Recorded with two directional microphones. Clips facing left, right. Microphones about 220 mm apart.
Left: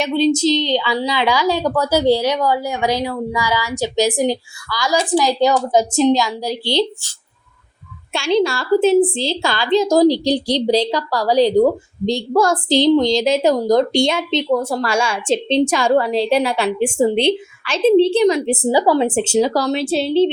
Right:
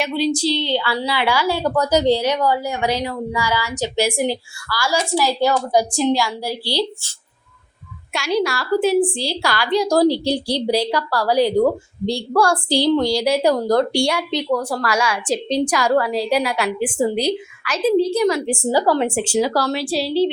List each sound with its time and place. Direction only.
0.0 s a woman's voice: 25° left (ahead or behind)
8.1 s a woman's voice: 25° left (ahead or behind)